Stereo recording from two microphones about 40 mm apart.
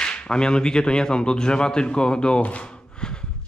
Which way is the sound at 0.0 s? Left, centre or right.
Left.